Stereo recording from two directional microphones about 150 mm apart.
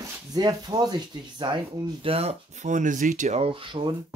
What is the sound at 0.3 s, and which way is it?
Speech, 25° right (ahead or behind).